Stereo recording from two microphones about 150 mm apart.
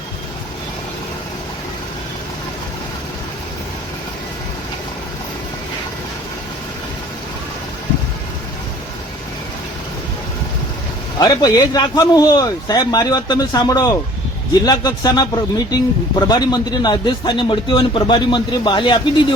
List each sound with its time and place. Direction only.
11.2 s a man's voice: 25° left (ahead or behind)